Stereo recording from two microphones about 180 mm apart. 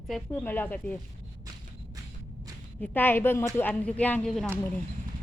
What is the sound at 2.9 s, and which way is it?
Speech, 10° left (ahead or behind).